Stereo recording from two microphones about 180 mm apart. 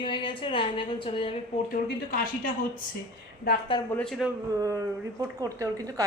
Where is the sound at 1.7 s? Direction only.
50° left (ahead or behind).